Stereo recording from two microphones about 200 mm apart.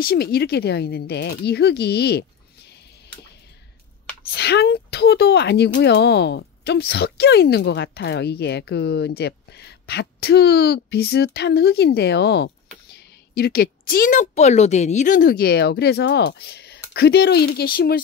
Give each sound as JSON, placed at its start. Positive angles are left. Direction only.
{"t": 0.0, "sound": "a woman's voice", "side_deg": 50}
{"t": 4.3, "sound": "a woman's voice", "side_deg": 55}